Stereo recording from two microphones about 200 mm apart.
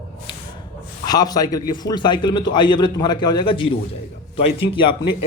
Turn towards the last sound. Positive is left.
turn(degrees=25)  # may be behind; listen again after turning